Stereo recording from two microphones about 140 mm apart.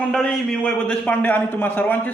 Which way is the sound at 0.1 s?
5° left (ahead or behind).